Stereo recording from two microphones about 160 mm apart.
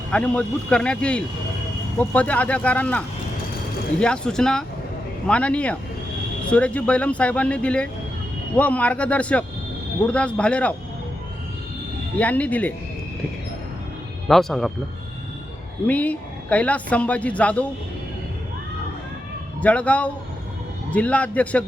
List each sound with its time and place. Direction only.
0.1 s a woman's voice: 5° left (ahead or behind)
4.0 s a woman's voice: 5° left (ahead or behind)
12.1 s a woman's voice: 10° left (ahead or behind)
14.3 s speech: centre (ahead or behind)
15.9 s a woman's voice: 10° left (ahead or behind)
19.6 s a woman's voice: 10° left (ahead or behind)